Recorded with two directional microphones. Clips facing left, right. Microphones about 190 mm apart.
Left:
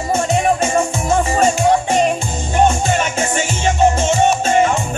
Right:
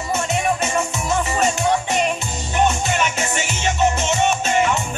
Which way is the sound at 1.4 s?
50° left (ahead or behind).